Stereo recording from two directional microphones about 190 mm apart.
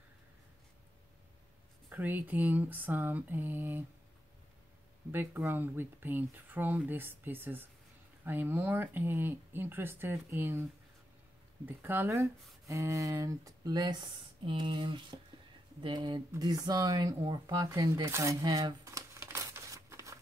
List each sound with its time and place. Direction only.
1.9 s speech: 10° right (ahead or behind)
5.1 s speech: 10° right (ahead or behind)
11.6 s speech: 10° right (ahead or behind)